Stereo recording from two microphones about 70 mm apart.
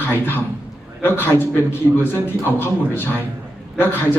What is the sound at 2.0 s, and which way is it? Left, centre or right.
A man's voice, left.